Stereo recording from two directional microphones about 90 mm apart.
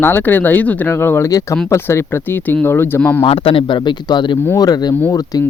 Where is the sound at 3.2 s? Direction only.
90° left; by 4.4 s 60° left (ahead or behind).